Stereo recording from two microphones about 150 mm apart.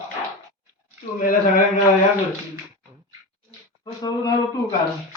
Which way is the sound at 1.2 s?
65° left (ahead or behind).